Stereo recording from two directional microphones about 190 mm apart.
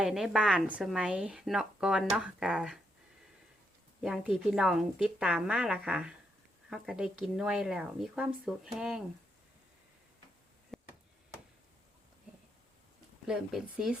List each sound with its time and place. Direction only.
0.0 s a woman's voice: centre (ahead or behind)
4.0 s a woman's voice: 5° right (ahead or behind)
10.7 s a sound: centre (ahead or behind)
13.2 s a woman's voice: 5° right (ahead or behind)